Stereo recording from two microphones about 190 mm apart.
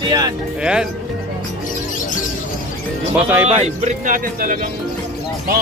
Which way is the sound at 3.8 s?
45° right (ahead or behind).